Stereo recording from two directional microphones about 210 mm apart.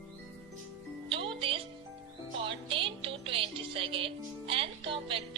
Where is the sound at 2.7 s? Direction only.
25° right (ahead or behind).